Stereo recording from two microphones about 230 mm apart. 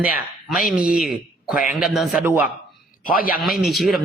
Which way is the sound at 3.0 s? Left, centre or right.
Left.